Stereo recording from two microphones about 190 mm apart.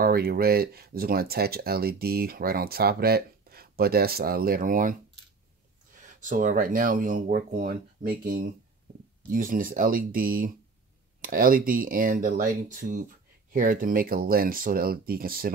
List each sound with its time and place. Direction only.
0.0 s speech: 55° right (ahead or behind)
5.9 s speech: 40° right (ahead or behind)